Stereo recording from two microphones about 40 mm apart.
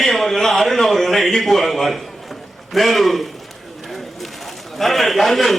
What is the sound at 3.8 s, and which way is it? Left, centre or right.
Bird, centre.